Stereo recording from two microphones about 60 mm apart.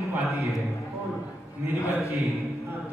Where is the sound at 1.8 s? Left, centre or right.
Left.